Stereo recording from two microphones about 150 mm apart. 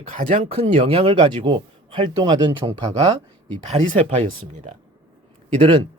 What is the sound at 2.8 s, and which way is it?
A man's voice, 45° right (ahead or behind).